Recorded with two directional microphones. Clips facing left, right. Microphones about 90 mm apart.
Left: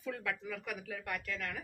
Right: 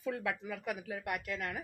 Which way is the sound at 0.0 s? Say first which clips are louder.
Right 3 dB; 15° right (ahead or behind).